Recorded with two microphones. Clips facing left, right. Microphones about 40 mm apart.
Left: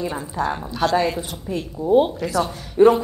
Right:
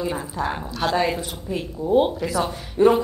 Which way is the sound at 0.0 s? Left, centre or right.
Centre.